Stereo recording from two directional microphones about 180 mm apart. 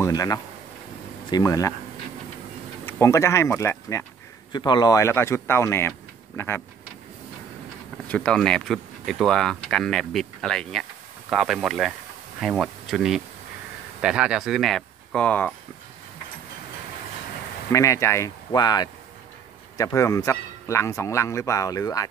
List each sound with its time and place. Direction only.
0.0 s speech: 20° left (ahead or behind)
2.8 s speech: 15° left (ahead or behind)
8.1 s speech: 5° left (ahead or behind)
17.7 s speech: 15° left (ahead or behind)